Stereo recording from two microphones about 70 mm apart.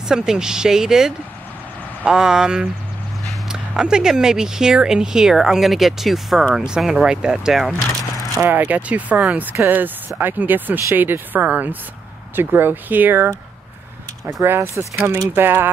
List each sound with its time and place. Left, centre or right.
0.1 s speech: centre
8.4 s speech: right
15.2 s speech: right